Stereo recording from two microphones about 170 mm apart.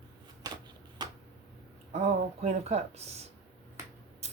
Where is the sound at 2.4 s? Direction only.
40° right (ahead or behind).